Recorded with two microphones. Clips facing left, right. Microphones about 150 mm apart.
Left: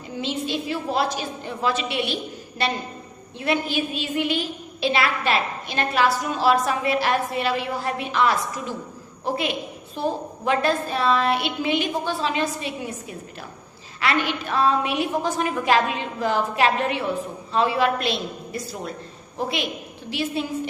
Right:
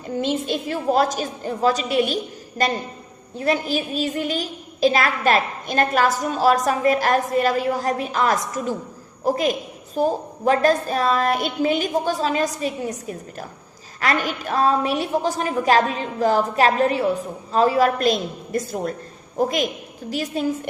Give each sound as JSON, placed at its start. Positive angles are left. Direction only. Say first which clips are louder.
{"t": 0.2, "sound": "a woman's voice", "louder": "right 3 dB", "side_deg": -50}